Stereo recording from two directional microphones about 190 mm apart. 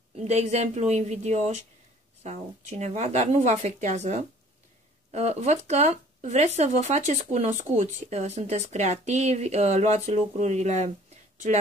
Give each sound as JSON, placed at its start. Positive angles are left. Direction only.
{"t": 0.1, "sound": "speech", "side_deg": -35}